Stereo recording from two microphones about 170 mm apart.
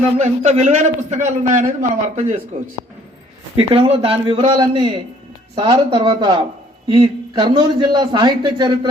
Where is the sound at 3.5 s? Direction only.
35° right (ahead or behind).